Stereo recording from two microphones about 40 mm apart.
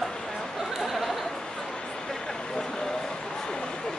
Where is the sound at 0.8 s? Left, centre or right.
Centre.